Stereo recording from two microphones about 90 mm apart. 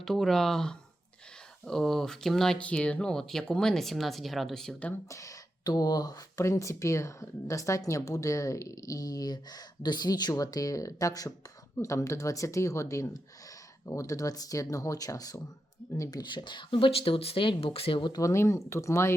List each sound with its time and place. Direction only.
0.0 s speech: 5° left (ahead or behind)
5.0 s speech: 35° left (ahead or behind)
6.4 s speech: 35° left (ahead or behind)
16.0 s speech: 55° left (ahead or behind); by 18.1 s 85° left
18.1 s speech: 35° left (ahead or behind)